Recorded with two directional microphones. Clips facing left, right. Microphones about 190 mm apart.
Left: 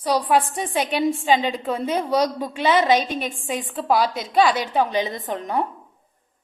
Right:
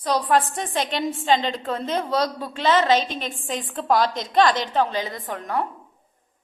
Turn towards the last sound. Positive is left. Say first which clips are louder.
# left 2 dB
turn(degrees=20)  # may be behind; listen again after turning